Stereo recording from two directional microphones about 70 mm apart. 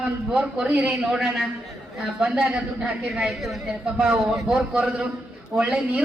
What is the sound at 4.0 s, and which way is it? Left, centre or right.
A woman's voice, centre.